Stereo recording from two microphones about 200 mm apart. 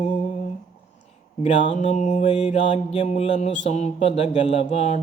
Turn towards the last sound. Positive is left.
turn(degrees=30)  # may be behind; listen again after turning